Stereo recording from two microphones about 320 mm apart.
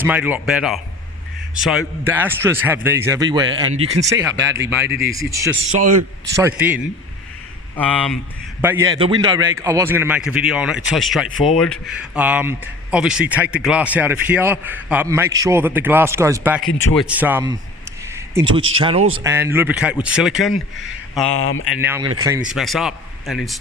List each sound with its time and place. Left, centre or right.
0.0 s a man's voice: centre
7.8 s speech: centre
8.6 s a man's voice: centre
16.6 s speech: left
17.0 s speech: centre
18.1 s a sound: centre
18.8 s a man's voice: centre
21.2 s speech: left
21.8 s a man's voice: centre